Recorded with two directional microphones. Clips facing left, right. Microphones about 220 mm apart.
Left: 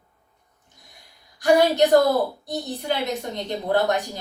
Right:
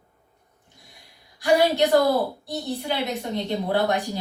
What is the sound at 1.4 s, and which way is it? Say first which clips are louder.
A woman's voice: left 2 dB; 45° left (ahead or behind).